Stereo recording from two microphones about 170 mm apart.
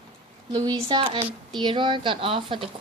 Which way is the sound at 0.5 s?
25° right (ahead or behind).